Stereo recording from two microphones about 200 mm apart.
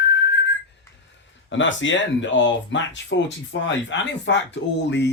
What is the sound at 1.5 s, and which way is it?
Speech, 70° left (ahead or behind).